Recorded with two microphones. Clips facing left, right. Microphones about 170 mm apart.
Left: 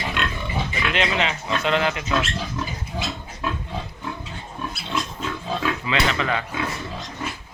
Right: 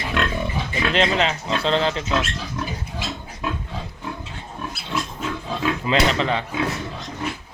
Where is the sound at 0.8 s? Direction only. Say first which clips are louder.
Right 4 dB; 35° right (ahead or behind).